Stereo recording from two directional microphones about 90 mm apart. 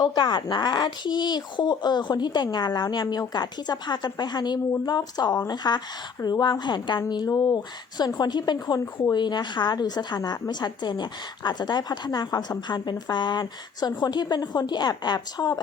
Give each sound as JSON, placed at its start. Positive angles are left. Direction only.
{"t": 0.0, "sound": "a woman's voice", "side_deg": 60}
{"t": 9.1, "sound": "a woman's voice", "side_deg": 55}